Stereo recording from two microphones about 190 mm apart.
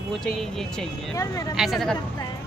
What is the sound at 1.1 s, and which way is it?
Speech, 15° left (ahead or behind).